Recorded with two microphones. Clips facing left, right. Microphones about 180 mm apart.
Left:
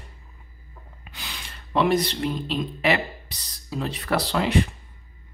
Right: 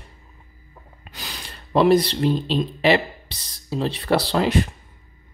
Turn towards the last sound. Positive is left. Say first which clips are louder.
# right 2 dB
turn(degrees=-40)  # may be behind; listen again after turning